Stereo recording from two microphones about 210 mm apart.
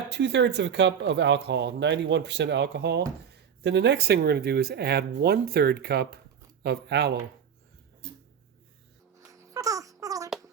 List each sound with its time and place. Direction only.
0.1 s speech: 55° right (ahead or behind)
9.3 s babbling: 15° right (ahead or behind)